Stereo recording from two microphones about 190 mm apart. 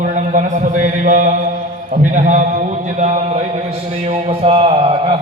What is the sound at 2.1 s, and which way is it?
A man's voice, 40° right (ahead or behind).